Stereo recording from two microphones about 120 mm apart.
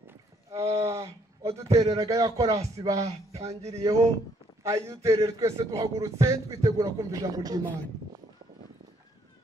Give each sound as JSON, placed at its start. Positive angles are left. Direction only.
{"t": 0.6, "sound": "a man's voice", "side_deg": -25}
{"t": 3.0, "sound": "speech", "side_deg": -55}
{"t": 3.8, "sound": "a man's voice", "side_deg": -25}